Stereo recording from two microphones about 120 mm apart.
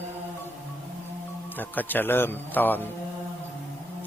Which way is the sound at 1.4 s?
15° left (ahead or behind).